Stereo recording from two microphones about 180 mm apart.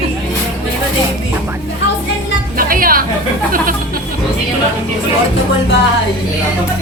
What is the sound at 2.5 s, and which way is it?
Music, 50° right (ahead or behind).